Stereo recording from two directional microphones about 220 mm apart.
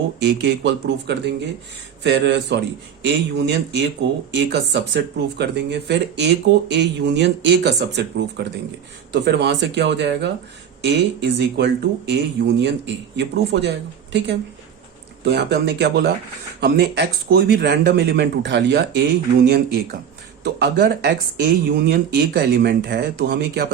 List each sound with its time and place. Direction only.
0.4 s speech: 50° right (ahead or behind)